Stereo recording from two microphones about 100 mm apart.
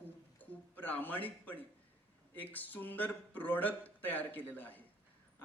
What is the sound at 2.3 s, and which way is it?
Speech, 15° left (ahead or behind).